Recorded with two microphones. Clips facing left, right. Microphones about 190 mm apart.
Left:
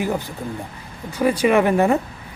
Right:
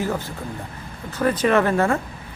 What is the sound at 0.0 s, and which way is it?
Speech, 15° left (ahead or behind).